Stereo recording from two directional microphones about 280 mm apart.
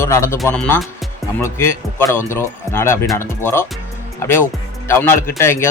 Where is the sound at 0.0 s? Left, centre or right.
Centre.